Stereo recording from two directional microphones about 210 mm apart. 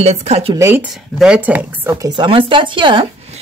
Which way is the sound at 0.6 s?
10° right (ahead or behind).